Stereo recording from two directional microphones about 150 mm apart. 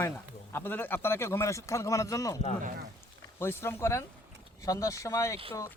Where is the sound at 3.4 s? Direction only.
15° left (ahead or behind).